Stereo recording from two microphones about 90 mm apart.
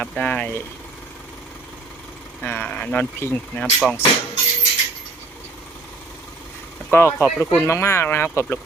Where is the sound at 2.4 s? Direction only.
20° left (ahead or behind).